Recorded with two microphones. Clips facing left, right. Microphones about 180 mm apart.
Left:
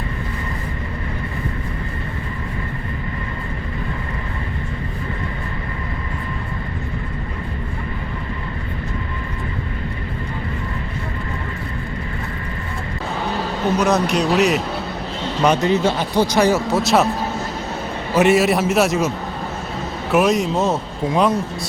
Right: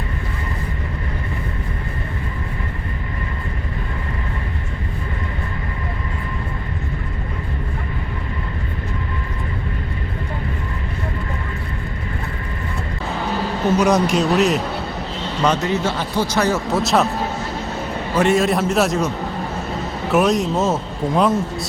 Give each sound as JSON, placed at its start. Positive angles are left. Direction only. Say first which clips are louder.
{"t": 13.7, "sound": "a man's voice", "louder": "right 1 dB", "side_deg": -10}
{"t": 15.4, "sound": "a man's voice", "louder": "left 3 dB", "side_deg": 15}
{"t": 16.6, "sound": "a man's voice", "louder": "left 1 dB", "side_deg": 0}
{"t": 18.2, "sound": "a man's voice", "louder": "left 2 dB", "side_deg": 5}
{"t": 20.1, "sound": "a man's voice", "louder": "even", "side_deg": 0}